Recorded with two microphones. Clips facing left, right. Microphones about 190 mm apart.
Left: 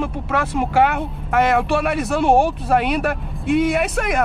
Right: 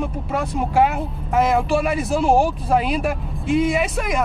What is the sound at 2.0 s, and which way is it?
Speech, 65° left (ahead or behind).